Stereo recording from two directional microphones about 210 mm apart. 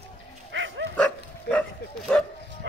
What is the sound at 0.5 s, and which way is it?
Bow-wow, 65° right (ahead or behind).